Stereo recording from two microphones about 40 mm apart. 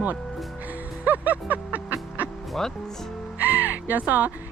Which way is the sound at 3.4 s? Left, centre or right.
Right.